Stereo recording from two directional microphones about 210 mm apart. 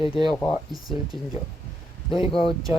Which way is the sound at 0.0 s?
25° left (ahead or behind).